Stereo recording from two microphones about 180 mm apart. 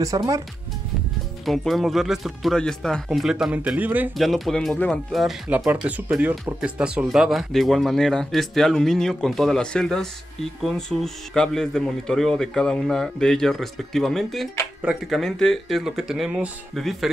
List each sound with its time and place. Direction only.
0.0 s speech: 20° right (ahead or behind)
1.4 s speech: centre (ahead or behind)
4.3 s speech: centre (ahead or behind)